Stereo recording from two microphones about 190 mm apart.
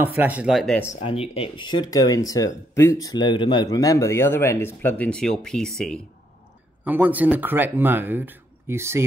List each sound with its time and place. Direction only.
0.0 s speech: 10° right (ahead or behind)
1.0 s speech: 30° left (ahead or behind); by 5.9 s 5° left (ahead or behind)
6.8 s speech: 10° right (ahead or behind)